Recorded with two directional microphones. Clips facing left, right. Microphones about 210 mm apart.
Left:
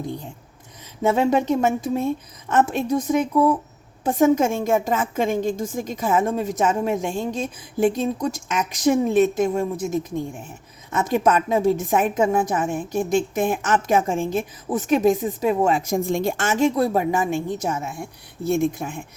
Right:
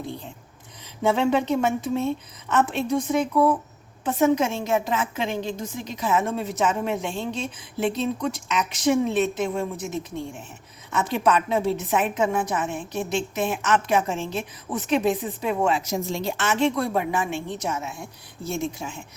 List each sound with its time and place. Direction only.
0.0 s a woman's voice: 45° left (ahead or behind)